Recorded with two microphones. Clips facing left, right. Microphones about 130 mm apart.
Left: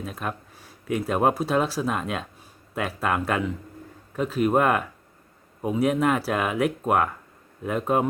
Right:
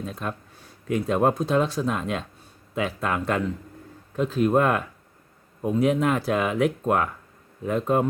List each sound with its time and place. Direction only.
0.0 s speech: 5° left (ahead or behind)